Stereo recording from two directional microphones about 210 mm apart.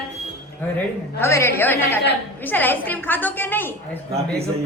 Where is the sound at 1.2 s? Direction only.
10° left (ahead or behind).